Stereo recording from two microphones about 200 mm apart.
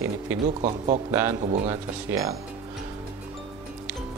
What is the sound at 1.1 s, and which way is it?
Speech, 15° right (ahead or behind).